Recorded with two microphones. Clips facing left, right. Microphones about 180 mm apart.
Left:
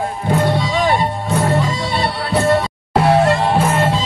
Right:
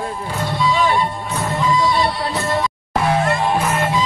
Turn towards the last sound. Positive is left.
turn(degrees=30)  # may be behind; listen again after turning